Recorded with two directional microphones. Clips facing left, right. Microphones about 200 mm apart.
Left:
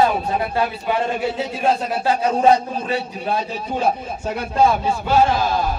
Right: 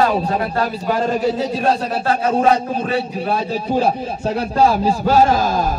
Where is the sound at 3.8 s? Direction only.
35° right (ahead or behind).